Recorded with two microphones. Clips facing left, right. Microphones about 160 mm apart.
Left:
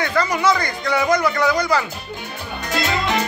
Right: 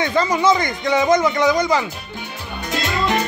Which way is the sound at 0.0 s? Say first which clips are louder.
Right 2 dB; 20° right (ahead or behind).